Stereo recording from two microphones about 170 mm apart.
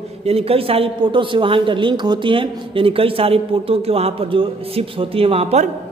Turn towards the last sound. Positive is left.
turn(degrees=-40)  # may be behind; listen again after turning